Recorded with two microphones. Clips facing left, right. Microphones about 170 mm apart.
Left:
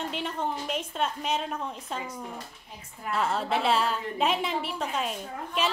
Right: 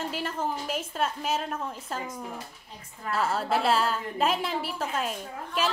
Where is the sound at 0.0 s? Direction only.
Centre (ahead or behind).